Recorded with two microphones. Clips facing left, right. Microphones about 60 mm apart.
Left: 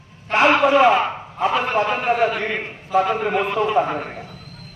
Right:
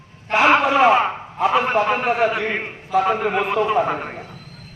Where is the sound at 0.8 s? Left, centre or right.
Right.